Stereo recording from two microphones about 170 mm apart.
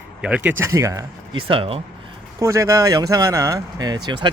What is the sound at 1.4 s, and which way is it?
Speech, 30° right (ahead or behind).